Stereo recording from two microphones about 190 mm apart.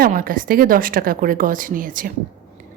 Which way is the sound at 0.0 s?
50° right (ahead or behind).